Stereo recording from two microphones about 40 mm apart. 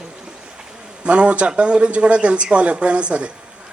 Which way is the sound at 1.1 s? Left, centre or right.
Right.